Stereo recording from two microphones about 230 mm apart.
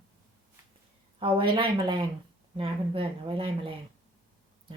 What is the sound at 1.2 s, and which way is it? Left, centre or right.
Speech, right.